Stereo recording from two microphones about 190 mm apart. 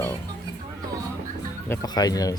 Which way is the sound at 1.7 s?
20° left (ahead or behind).